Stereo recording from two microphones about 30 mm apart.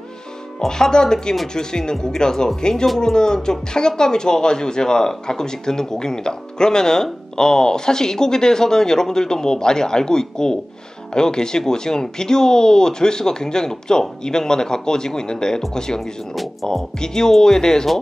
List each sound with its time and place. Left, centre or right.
0.7 s speech: left